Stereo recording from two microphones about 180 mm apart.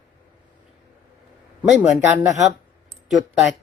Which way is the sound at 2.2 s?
15° right (ahead or behind).